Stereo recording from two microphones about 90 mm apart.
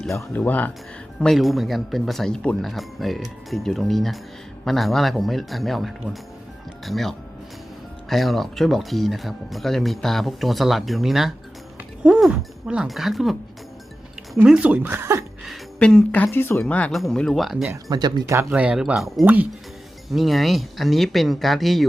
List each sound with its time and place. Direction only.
0.3 s speech: 20° left (ahead or behind)
1.2 s speech: centre (ahead or behind)
14.4 s speech: 10° right (ahead or behind); by 15.2 s 30° right (ahead or behind)
15.8 s speech: 10° left (ahead or behind)
16.2 s speech: 25° left (ahead or behind)
16.6 s speech: 15° left (ahead or behind)
16.9 s speech: 5° left (ahead or behind)
17.8 s speech: 50° right (ahead or behind)
18.5 s speech: 15° right (ahead or behind)
18.9 s speech: centre (ahead or behind)
19.2 s speech: 15° right (ahead or behind)
20.1 s speech: centre (ahead or behind)